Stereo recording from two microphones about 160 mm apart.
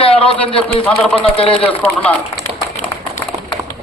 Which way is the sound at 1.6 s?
10° left (ahead or behind).